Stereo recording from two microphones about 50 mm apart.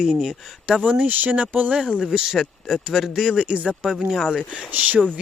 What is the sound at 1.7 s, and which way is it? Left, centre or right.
Speech, centre.